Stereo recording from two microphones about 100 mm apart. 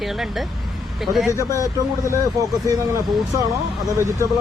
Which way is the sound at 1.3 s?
30° left (ahead or behind).